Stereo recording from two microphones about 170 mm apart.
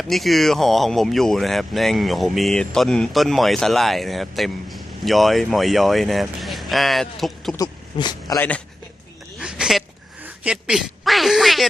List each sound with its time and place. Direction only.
0.0 s speech: centre (ahead or behind)
7.5 s speech: 25° left (ahead or behind)
8.4 s speech: 10° left (ahead or behind)
9.4 s a sound: 5° right (ahead or behind)
10.2 s speech: 5° right (ahead or behind)